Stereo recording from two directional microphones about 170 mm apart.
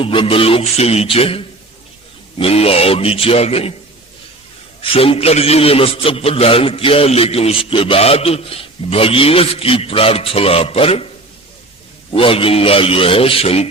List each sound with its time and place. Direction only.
0.0 s a man's voice: 30° left (ahead or behind)
4.8 s a man's voice: 30° left (ahead or behind)
12.1 s a man's voice: 30° left (ahead or behind)